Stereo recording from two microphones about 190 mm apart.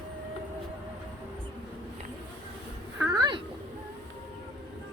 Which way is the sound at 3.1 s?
20° right (ahead or behind).